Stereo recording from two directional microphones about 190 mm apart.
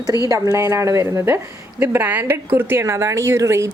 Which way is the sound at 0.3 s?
15° right (ahead or behind).